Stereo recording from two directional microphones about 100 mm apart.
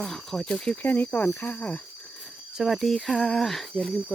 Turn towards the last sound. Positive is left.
turn(degrees=5)  # may be behind; listen again after turning